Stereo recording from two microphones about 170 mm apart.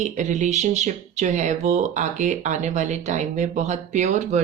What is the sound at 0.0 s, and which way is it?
Speech, 45° right (ahead or behind).